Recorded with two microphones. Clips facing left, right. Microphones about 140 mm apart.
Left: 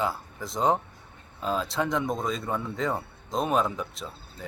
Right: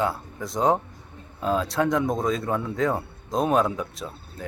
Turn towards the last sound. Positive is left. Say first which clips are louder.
# right 4 dB
turn(degrees=0)  # may be behind; listen again after turning